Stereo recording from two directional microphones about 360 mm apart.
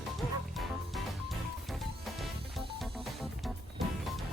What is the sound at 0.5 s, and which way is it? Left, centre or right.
Music, centre.